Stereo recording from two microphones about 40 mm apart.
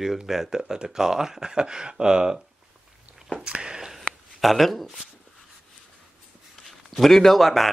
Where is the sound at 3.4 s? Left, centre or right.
Right.